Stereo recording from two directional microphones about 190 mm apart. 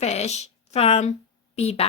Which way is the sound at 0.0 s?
35° left (ahead or behind).